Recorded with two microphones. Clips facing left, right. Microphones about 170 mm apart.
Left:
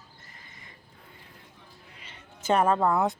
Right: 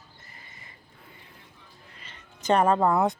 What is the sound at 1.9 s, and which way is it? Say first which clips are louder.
Cat: left 1 dB; 10° left (ahead or behind).